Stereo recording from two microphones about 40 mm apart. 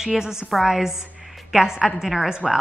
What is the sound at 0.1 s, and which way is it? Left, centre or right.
Speech, centre.